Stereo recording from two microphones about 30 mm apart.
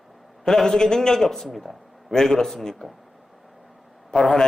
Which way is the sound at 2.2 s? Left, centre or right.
Centre.